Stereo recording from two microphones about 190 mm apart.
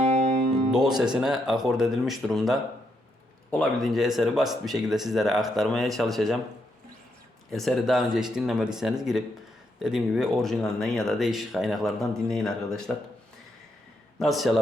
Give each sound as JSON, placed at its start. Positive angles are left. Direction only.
{"t": 0.0, "sound": "music", "side_deg": -35}
{"t": 0.9, "sound": "speech", "side_deg": -5}
{"t": 7.5, "sound": "speech", "side_deg": 0}
{"t": 14.2, "sound": "speech", "side_deg": 0}